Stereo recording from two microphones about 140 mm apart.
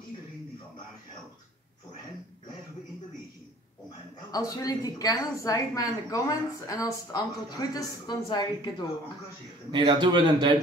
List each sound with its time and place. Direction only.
4.3 s a woman's voice: 25° left (ahead or behind)
9.7 s a man's voice: 35° right (ahead or behind)